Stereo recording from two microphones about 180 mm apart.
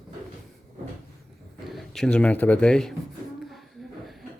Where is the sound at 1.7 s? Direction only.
Centre (ahead or behind).